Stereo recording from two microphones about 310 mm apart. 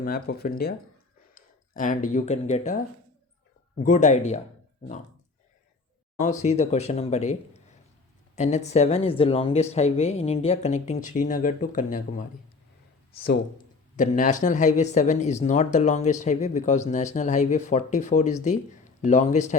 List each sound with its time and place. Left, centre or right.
0.0 s speech: left
3.8 s speech: left
6.1 s speech: left
13.9 s speech: left